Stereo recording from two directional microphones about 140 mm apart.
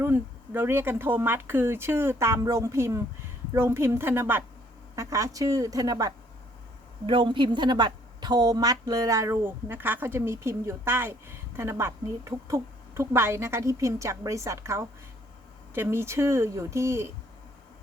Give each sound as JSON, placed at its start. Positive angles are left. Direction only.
{"t": 0.0, "sound": "a woman's voice", "side_deg": -15}
{"t": 7.0, "sound": "a woman's voice", "side_deg": -35}